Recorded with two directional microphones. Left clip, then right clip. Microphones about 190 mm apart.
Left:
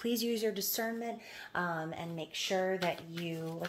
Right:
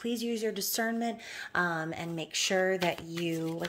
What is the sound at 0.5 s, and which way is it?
Speech, 25° right (ahead or behind).